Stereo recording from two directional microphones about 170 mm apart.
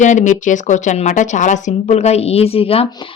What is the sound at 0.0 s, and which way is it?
Speech, 45° left (ahead or behind).